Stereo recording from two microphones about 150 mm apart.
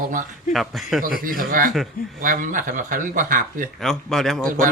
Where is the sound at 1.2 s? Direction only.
75° right (ahead or behind).